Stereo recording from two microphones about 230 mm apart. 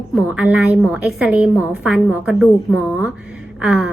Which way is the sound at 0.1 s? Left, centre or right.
Centre.